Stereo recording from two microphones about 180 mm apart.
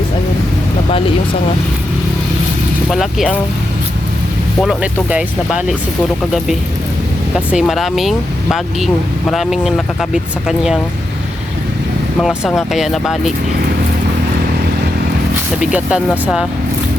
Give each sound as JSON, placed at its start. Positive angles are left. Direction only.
{"t": 0.9, "sound": "speech", "side_deg": 30}
{"t": 2.9, "sound": "speech", "side_deg": 0}
{"t": 4.6, "sound": "speech", "side_deg": 0}
{"t": 7.3, "sound": "speech", "side_deg": -5}
{"t": 9.3, "sound": "speech", "side_deg": 0}
{"t": 12.5, "sound": "speech", "side_deg": 0}
{"t": 15.6, "sound": "speech", "side_deg": -5}